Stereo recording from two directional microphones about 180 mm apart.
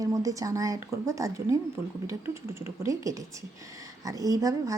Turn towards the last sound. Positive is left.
turn(degrees=-20)  # may be behind; listen again after turning